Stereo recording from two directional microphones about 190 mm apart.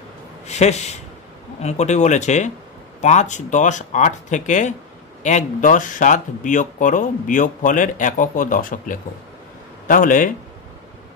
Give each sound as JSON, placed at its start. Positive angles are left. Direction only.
{"t": 0.5, "sound": "speech", "side_deg": 35}